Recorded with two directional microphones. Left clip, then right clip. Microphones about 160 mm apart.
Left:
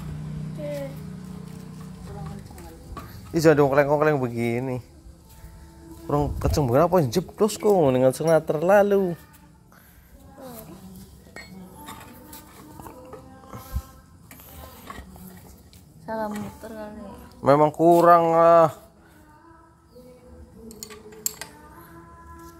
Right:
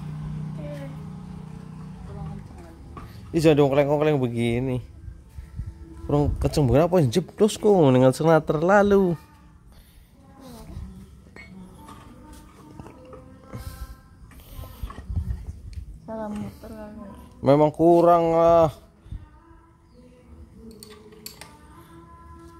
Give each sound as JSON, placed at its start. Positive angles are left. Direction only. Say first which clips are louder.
{"t": 3.1, "sound": "speech", "louder": "left 1 dB", "side_deg": -15}
{"t": 6.0, "sound": "speech", "louder": "right 1 dB", "side_deg": -30}
{"t": 16.6, "sound": "music", "louder": "left 3 dB", "side_deg": 25}
{"t": 17.4, "sound": "a man's voice", "louder": "left 1 dB", "side_deg": -30}
{"t": 17.7, "sound": "speech", "louder": "even", "side_deg": 0}
{"t": 18.0, "sound": "speech", "louder": "left 2 dB", "side_deg": -30}